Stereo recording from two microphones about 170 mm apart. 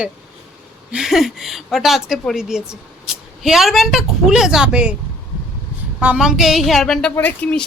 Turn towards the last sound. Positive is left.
turn(degrees=10)  # may be behind; listen again after turning